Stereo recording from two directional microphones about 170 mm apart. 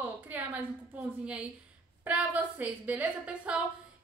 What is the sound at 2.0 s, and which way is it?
A woman's voice, 10° right (ahead or behind).